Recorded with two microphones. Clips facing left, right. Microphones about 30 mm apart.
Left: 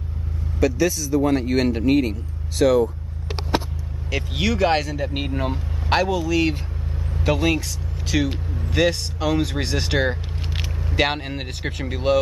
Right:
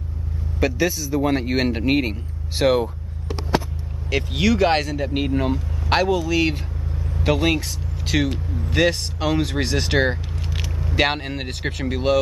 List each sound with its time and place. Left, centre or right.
0.6 s a man's voice: right
4.1 s speech: centre